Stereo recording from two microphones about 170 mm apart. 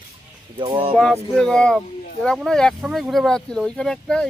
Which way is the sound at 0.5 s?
30° right (ahead or behind).